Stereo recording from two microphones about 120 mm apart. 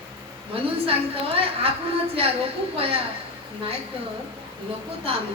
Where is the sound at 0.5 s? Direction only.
50° right (ahead or behind).